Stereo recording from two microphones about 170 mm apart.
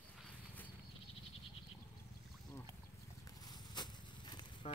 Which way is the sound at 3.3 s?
25° left (ahead or behind).